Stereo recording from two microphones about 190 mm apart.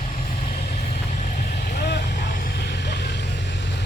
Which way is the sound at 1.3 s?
40° left (ahead or behind).